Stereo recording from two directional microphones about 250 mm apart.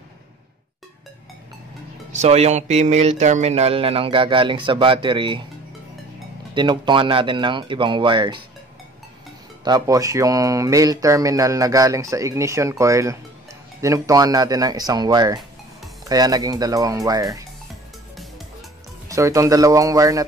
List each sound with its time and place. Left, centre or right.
2.1 s speech: right
6.5 s speech: centre
9.7 s mantra: centre
18.1 s music: centre
19.0 s mantra: centre